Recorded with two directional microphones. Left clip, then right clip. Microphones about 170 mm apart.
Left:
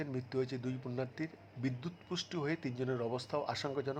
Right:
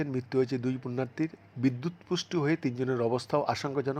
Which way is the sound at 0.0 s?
25° right (ahead or behind).